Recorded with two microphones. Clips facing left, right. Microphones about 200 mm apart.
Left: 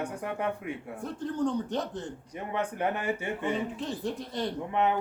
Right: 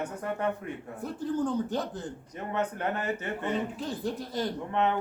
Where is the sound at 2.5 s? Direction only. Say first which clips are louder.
Even; 10° left (ahead or behind).